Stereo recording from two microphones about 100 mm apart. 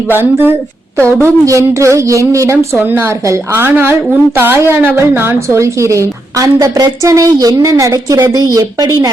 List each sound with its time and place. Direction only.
0.1 s a woman's voice: 20° right (ahead or behind); by 9.0 s 35° right (ahead or behind)